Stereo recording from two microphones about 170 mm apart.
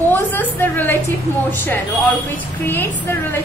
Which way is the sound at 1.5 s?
15° left (ahead or behind).